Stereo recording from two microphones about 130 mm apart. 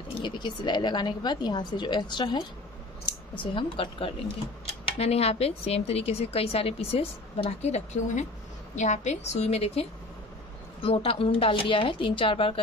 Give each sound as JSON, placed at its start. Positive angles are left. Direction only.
{"t": 0.2, "sound": "a woman's voice", "side_deg": 35}
{"t": 3.5, "sound": "a woman's voice", "side_deg": 40}